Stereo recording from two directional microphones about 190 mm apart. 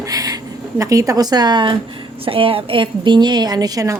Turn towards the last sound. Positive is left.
turn(degrees=-20)  # may be behind; listen again after turning